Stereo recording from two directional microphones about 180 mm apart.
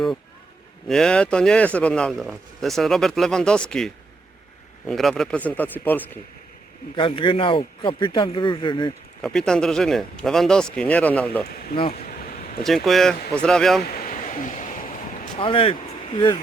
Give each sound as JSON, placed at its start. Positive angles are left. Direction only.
{"t": 0.9, "sound": "speech", "side_deg": 5}
{"t": 6.9, "sound": "a man's voice", "side_deg": 30}
{"t": 9.2, "sound": "speech", "side_deg": 5}
{"t": 11.4, "sound": "speech", "side_deg": 55}
{"t": 12.0, "sound": "a sound", "side_deg": 50}
{"t": 12.6, "sound": "speech", "side_deg": 0}
{"t": 13.8, "sound": "a sound", "side_deg": 55}
{"t": 15.4, "sound": "a man's voice", "side_deg": 30}